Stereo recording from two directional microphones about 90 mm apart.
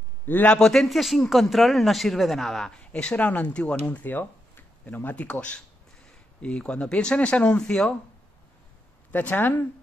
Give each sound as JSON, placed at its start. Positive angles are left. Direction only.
{"t": 0.2, "sound": "a man's voice", "side_deg": 20}
{"t": 0.6, "sound": "speech", "side_deg": 5}
{"t": 9.1, "sound": "a woman's voice", "side_deg": 20}